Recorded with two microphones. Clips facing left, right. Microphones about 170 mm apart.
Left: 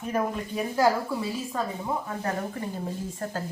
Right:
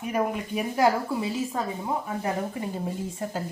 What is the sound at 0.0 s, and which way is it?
Speech, 15° right (ahead or behind).